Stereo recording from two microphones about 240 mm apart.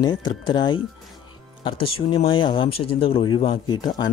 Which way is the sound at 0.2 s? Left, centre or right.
Centre.